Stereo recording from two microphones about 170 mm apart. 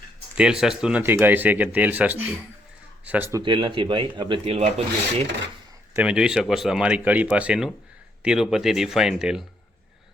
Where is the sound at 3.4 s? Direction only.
30° right (ahead or behind).